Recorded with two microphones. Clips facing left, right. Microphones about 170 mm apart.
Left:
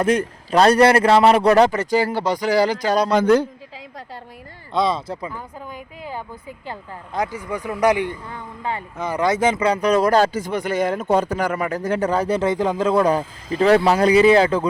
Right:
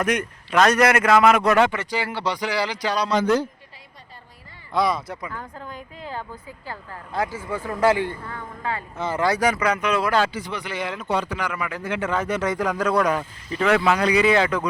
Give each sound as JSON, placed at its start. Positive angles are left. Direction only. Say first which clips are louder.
{"t": 0.0, "sound": "speech", "louder": "left 5 dB", "side_deg": 30}
{"t": 4.7, "sound": "speech", "louder": "left 2 dB", "side_deg": 25}
{"t": 5.3, "sound": "speech", "louder": "left 1 dB", "side_deg": 10}